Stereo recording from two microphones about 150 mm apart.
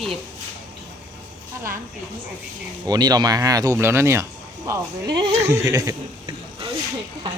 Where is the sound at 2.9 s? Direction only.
25° right (ahead or behind).